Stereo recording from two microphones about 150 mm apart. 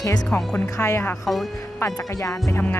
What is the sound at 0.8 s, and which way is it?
Speech, 15° left (ahead or behind).